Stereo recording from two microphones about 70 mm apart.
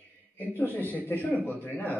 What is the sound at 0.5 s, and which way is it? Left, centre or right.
A man's voice, left.